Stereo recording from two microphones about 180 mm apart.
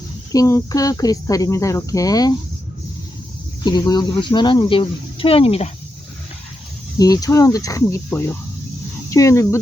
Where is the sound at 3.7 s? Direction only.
25° left (ahead or behind).